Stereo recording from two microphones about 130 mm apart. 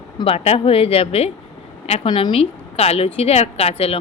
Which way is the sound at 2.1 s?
40° left (ahead or behind).